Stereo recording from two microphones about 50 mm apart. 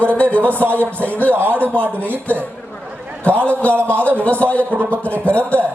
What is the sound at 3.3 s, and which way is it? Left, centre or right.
A man's voice, left.